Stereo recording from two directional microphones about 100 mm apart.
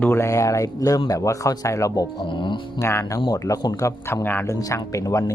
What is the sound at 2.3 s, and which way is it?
Speech, 55° left (ahead or behind).